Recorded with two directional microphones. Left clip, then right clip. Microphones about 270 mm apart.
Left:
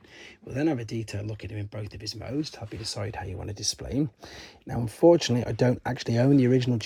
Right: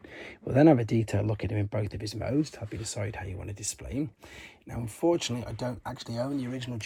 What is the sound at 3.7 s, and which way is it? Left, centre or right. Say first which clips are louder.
Speech: left 6 dB; centre.